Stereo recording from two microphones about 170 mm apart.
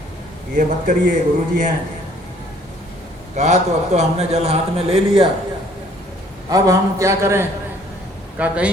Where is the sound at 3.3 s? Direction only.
45° right (ahead or behind).